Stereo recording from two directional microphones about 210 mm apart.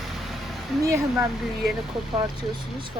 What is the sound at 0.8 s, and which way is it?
Speech, 15° right (ahead or behind).